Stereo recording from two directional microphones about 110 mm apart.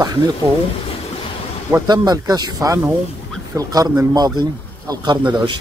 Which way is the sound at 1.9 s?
35° right (ahead or behind).